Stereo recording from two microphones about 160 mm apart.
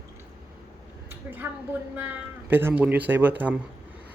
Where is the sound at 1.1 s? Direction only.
10° right (ahead or behind).